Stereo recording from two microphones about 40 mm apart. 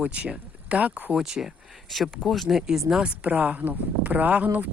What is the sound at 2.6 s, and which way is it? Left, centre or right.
Speech, centre.